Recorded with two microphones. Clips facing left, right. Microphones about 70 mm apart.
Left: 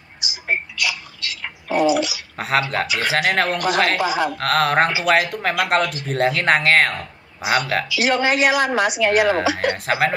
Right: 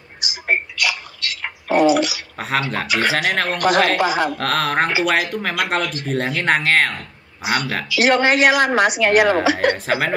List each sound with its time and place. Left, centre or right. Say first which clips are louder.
0.2 s a sound: right 3 dB; right
2.3 s speech: left 3 dB; centre
3.5 s a woman's voice: right 3 dB; right
4.4 s speech: left 2 dB; centre
7.9 s a woman's voice: right 5 dB; right
9.8 s speech: left 1 dB; centre